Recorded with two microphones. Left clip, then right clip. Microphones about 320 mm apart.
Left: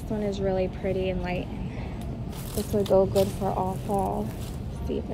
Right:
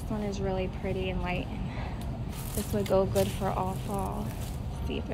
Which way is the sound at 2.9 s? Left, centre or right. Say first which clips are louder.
Left 4 dB; right.